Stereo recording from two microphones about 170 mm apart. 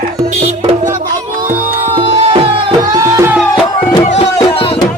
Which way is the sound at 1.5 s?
55° right (ahead or behind).